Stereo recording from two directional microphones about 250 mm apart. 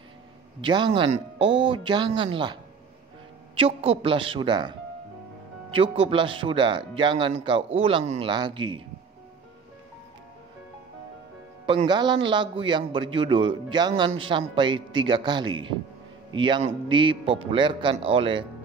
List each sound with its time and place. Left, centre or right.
0.6 s a man's voice: centre
11.6 s a man's voice: right